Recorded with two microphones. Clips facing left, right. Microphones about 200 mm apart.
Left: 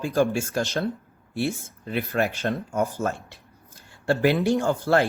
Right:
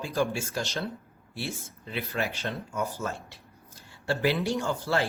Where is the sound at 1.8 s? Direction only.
50° left (ahead or behind).